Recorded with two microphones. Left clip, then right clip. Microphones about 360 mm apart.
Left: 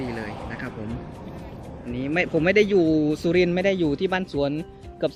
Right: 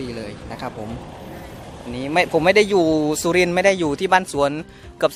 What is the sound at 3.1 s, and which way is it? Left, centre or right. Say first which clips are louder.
Speech: right 4 dB; centre.